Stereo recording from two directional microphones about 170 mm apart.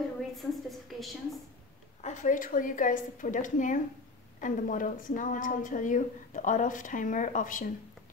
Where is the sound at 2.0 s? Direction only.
45° left (ahead or behind).